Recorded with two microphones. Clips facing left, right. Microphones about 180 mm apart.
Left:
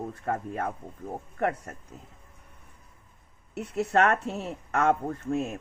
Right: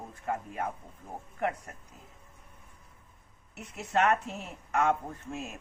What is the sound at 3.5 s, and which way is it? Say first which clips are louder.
A woman's voice: left 6 dB; 65° left (ahead or behind).